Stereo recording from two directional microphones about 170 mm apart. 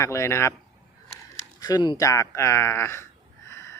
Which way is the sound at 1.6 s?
20° left (ahead or behind).